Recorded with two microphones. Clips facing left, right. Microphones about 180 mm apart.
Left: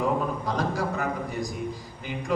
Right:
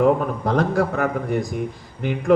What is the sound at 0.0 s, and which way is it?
A man's voice, 60° right (ahead or behind).